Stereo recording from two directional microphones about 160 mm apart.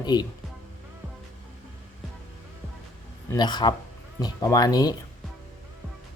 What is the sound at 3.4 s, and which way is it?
Speech, 25° left (ahead or behind).